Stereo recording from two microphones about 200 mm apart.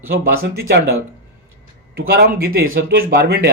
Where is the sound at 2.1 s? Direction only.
50° right (ahead or behind).